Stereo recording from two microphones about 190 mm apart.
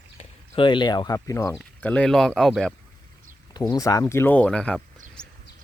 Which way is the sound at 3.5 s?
20° left (ahead or behind).